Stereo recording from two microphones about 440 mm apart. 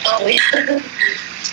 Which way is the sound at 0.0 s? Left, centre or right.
Right.